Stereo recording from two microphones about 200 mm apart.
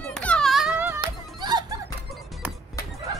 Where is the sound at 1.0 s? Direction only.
20° right (ahead or behind).